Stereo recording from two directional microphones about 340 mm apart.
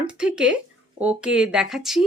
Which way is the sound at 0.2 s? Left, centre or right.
Centre.